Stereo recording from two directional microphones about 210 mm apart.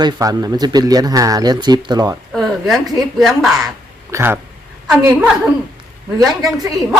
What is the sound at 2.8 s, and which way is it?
Speech, 20° right (ahead or behind).